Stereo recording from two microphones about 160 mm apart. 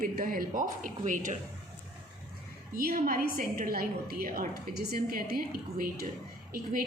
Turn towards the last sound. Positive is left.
turn(degrees=-65)  # may be behind; listen again after turning